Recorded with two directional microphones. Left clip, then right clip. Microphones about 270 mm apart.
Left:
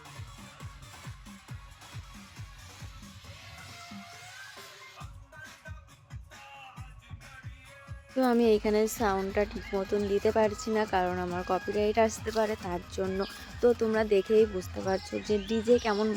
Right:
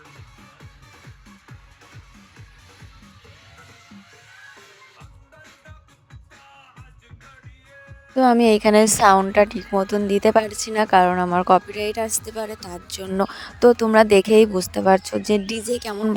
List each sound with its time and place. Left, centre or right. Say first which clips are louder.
3.8 s music: left 1 dB; centre
8.1 s speech: right 9 dB; right
12.2 s a woman's voice: even; centre
13.1 s speech: right 11 dB; right